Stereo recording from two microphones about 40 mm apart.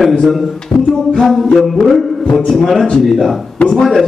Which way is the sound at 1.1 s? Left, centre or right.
Centre.